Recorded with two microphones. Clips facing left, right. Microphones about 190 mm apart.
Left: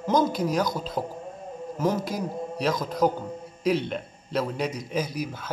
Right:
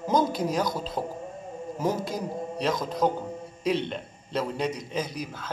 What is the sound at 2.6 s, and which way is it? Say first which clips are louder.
A man's voice: left 2 dB; centre (ahead or behind).